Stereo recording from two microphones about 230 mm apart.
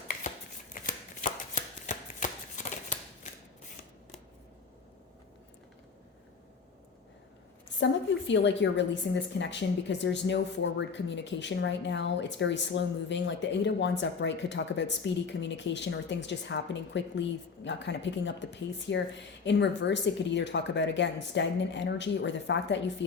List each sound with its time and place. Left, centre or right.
0.7 s shuffling cards: left
8.3 s a woman's voice: left